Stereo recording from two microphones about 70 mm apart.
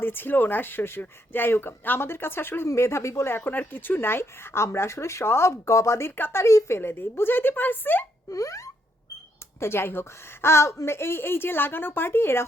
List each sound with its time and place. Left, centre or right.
0.0 s speech: left
6.4 s plop: left
6.7 s speech: left
8.3 s plop: left
9.6 s speech: left